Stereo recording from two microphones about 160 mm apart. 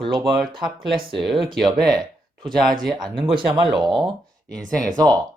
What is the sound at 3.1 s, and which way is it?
Speech, 30° right (ahead or behind).